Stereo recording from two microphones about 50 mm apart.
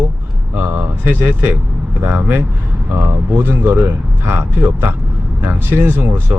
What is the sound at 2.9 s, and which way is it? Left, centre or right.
Speech, right.